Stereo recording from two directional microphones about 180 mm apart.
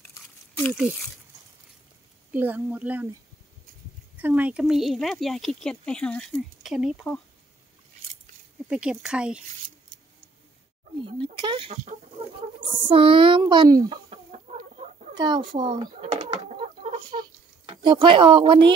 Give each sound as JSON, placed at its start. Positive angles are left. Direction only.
{"t": 0.7, "sound": "speech", "side_deg": 0}
{"t": 2.3, "sound": "a woman's voice", "side_deg": -10}
{"t": 4.2, "sound": "speech", "side_deg": -10}
{"t": 8.6, "sound": "speech", "side_deg": -5}
{"t": 11.0, "sound": "a child's voice", "side_deg": -25}
{"t": 15.1, "sound": "a child's voice", "side_deg": -25}
{"t": 16.0, "sound": "a sound", "side_deg": -35}
{"t": 17.1, "sound": "a sound", "side_deg": -25}